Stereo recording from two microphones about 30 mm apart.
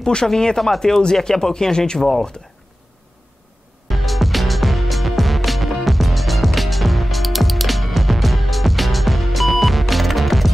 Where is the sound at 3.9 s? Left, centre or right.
Centre.